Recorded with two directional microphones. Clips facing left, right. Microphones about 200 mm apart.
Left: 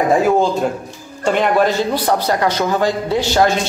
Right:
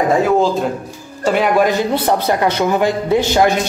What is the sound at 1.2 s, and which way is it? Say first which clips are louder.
A man's voice: right 1 dB; 5° right (ahead or behind).